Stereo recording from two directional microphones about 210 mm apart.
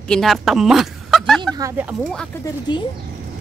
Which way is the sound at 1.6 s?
10° right (ahead or behind).